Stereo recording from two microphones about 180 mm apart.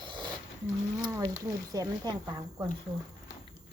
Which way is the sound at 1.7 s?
20° right (ahead or behind).